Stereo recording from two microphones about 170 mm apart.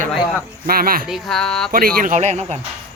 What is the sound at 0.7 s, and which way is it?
Speech, 60° right (ahead or behind).